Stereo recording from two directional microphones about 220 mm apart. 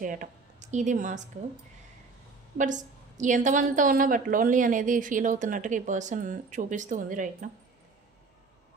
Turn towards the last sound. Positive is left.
turn(degrees=-35)  # may be behind; listen again after turning